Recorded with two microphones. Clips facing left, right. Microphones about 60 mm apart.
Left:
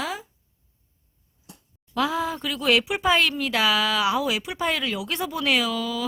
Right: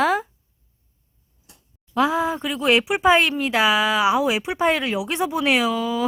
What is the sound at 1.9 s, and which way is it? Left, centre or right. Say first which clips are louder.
Speech: right 5 dB; right.